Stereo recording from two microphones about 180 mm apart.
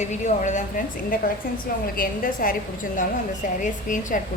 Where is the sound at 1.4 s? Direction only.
55° left (ahead or behind).